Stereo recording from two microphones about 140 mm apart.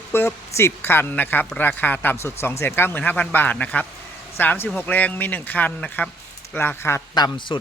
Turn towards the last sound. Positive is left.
turn(degrees=35)  # may be behind; listen again after turning